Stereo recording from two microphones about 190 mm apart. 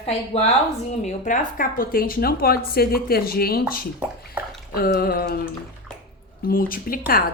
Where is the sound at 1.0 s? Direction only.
45° left (ahead or behind).